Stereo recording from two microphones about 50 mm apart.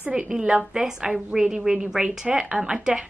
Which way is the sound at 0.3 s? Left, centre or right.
Centre.